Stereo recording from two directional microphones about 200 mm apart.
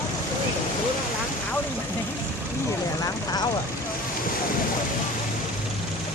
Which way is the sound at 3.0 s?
20° left (ahead or behind).